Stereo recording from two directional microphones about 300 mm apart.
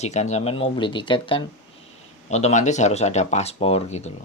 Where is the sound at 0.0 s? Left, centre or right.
Left.